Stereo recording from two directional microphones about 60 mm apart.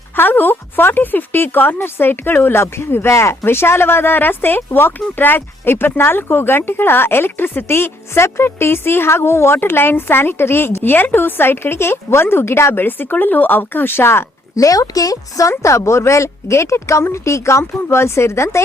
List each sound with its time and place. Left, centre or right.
0.2 s speech: left
14.5 s speech: left